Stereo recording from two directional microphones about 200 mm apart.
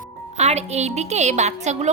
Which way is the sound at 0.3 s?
35° right (ahead or behind).